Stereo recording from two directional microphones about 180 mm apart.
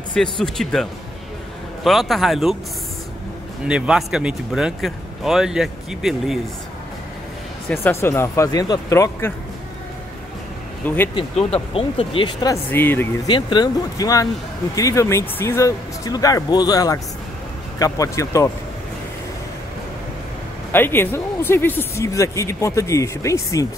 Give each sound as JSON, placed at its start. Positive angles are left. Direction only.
{"t": 0.1, "sound": "a man's voice", "side_deg": 5}
{"t": 1.9, "sound": "a man's voice", "side_deg": 0}
{"t": 3.6, "sound": "a man's voice", "side_deg": -5}
{"t": 7.7, "sound": "speech", "side_deg": 15}
{"t": 10.8, "sound": "speech", "side_deg": 10}
{"t": 11.1, "sound": "speech", "side_deg": 30}
{"t": 12.4, "sound": "speech", "side_deg": 10}
{"t": 13.3, "sound": "speech", "side_deg": 25}
{"t": 20.7, "sound": "speech", "side_deg": 10}